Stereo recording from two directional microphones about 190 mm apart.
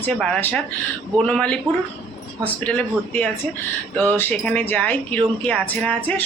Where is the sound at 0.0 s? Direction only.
5° left (ahead or behind).